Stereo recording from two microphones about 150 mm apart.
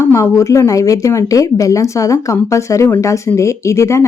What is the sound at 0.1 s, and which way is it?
Speech, 20° left (ahead or behind).